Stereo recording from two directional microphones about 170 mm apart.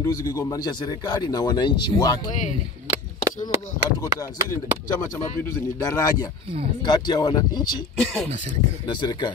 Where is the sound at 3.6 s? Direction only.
20° left (ahead or behind).